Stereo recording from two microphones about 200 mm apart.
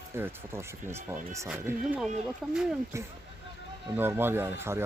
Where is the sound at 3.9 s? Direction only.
10° right (ahead or behind).